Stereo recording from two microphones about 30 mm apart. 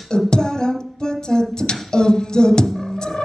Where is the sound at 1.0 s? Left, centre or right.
Left.